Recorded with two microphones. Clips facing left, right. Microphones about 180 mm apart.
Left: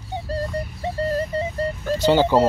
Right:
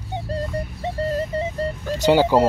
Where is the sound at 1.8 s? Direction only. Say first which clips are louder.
Right 1 dB; 10° right (ahead or behind).